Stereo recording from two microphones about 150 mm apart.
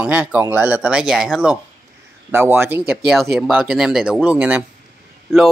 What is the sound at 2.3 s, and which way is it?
Speech, 15° right (ahead or behind).